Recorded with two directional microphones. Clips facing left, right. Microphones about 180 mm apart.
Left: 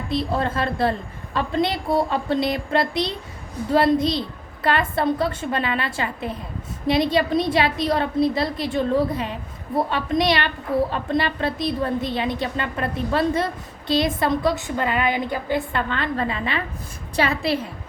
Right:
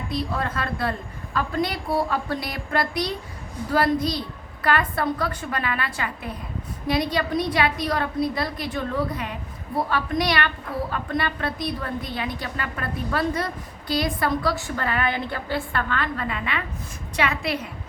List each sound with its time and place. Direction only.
0.1 s a woman's voice: 25° left (ahead or behind)